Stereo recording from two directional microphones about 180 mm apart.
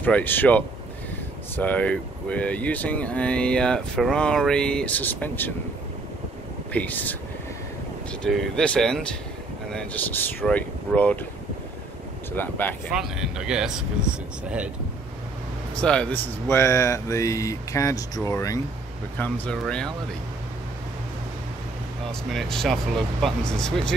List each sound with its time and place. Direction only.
0.0 s speech: 10° left (ahead or behind)
6.7 s speech: 10° left (ahead or behind)
12.3 s speech: 10° left (ahead or behind)
12.9 s speech: 5° right (ahead or behind)
15.7 s speech: 5° left (ahead or behind)
22.3 s speech: centre (ahead or behind)